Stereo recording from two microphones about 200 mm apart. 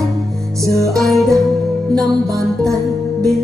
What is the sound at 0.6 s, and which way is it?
Music, 15° right (ahead or behind).